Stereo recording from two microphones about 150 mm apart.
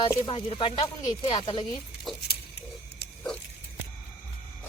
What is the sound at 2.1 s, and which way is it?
Patter, centre (ahead or behind).